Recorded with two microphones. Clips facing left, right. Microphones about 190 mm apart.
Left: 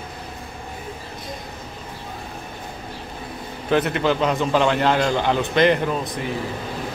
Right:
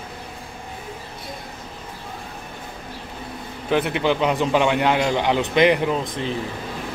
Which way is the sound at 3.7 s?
10° right (ahead or behind).